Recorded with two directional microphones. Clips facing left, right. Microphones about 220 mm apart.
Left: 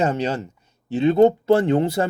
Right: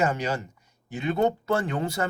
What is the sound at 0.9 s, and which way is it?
Speech, 25° left (ahead or behind).